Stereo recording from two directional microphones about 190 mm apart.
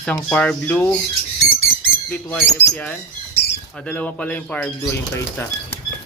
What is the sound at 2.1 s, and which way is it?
Speech, 10° left (ahead or behind).